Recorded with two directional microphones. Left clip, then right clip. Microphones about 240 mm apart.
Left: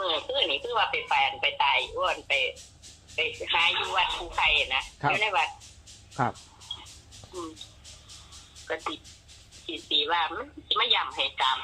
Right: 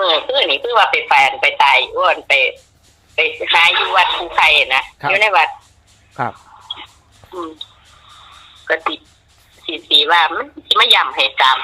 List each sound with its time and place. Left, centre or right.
0.0 s speech: right
6.7 s dog: right
8.6 s speech: right